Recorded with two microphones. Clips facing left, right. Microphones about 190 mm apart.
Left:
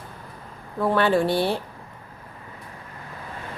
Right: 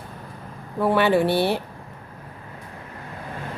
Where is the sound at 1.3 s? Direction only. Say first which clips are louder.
Right 2 dB; 65° right (ahead or behind).